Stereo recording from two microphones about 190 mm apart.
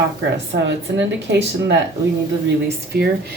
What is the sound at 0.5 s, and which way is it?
A woman's voice, 65° right (ahead or behind).